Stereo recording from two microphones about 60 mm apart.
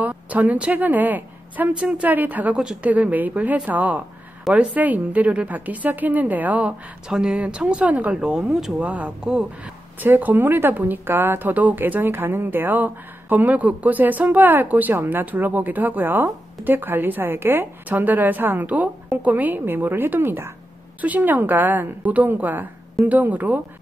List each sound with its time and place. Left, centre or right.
0.0 s a woman's voice: right
1.7 s a woman's voice: centre
2.5 s speech: centre
2.8 s a woman's voice: right
7.1 s speech: centre
7.3 s a woman's voice: centre
8.2 s speech: centre
8.8 s a woman's voice: right
9.2 s speech: centre
9.9 s speech: right
17.8 s speech: right
21.0 s a woman's voice: right